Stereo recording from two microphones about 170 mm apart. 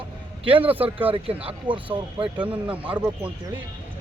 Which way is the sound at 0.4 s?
30° right (ahead or behind).